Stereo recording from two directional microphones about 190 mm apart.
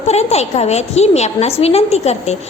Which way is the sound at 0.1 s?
35° left (ahead or behind).